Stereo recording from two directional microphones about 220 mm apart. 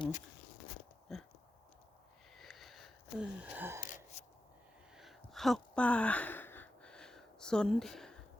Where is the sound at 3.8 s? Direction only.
35° left (ahead or behind).